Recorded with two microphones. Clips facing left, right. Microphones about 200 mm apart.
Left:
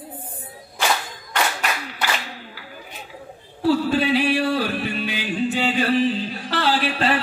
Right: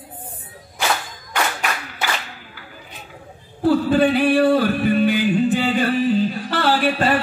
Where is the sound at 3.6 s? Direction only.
50° right (ahead or behind).